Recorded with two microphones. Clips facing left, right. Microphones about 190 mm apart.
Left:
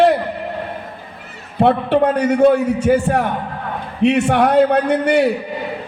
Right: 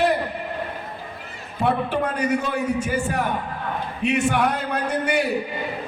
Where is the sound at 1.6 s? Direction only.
65° left (ahead or behind).